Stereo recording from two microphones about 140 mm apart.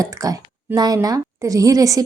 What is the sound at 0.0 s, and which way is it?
A woman's voice, 25° right (ahead or behind).